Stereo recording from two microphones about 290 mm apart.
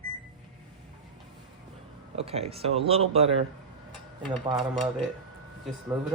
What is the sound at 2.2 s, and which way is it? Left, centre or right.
Speech, right.